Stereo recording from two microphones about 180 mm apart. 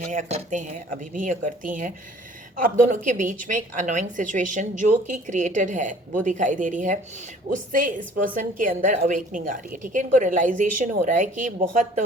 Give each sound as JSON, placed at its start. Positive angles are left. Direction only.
{"t": 0.0, "sound": "a woman's voice", "side_deg": -45}